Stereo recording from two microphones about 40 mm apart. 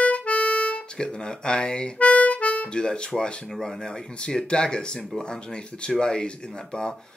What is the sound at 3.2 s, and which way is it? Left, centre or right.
Speech, left.